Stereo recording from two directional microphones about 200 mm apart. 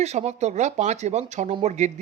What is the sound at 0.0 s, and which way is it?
Speech, 35° right (ahead or behind).